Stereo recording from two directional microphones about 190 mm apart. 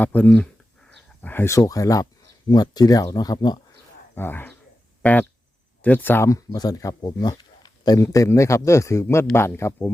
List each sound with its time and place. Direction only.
0.0 s speech: 10° left (ahead or behind)
4.1 s speech: 10° left (ahead or behind)
5.8 s speech: 10° left (ahead or behind)